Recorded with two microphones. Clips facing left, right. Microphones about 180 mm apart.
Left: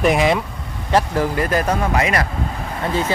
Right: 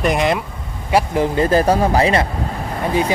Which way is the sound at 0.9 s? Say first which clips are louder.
Right 1 dB; 10° right (ahead or behind).